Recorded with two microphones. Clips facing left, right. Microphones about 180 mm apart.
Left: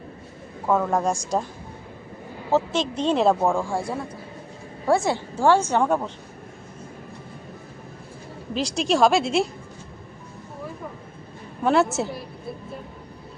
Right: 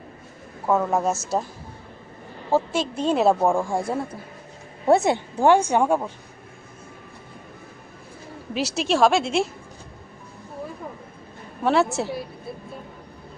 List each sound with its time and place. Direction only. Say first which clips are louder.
0.7 s a woman's voice: even; 5° right (ahead or behind)
2.7 s a woman's voice: even; 5° right (ahead or behind)
8.5 s a woman's voice: even; 5° right (ahead or behind)
11.6 s a woman's voice: even; centre (ahead or behind)